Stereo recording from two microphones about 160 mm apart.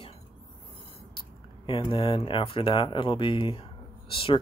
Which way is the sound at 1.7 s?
35° left (ahead or behind).